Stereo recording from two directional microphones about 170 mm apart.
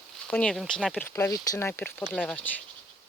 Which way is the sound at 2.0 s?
Centre (ahead or behind).